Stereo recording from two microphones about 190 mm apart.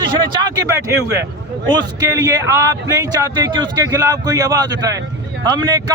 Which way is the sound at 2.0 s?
20° right (ahead or behind).